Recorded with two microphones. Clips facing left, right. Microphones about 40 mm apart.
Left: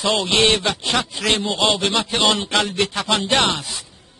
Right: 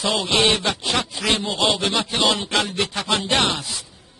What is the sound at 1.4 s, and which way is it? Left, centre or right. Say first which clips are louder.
Speech: left 2 dB; left.